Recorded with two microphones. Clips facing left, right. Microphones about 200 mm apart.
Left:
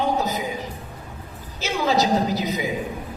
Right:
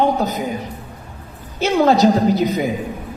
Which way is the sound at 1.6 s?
60° right (ahead or behind).